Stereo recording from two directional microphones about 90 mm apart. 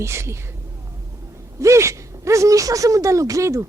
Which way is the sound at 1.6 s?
35° right (ahead or behind).